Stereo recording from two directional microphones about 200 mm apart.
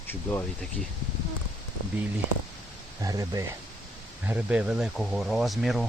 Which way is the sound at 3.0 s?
15° right (ahead or behind).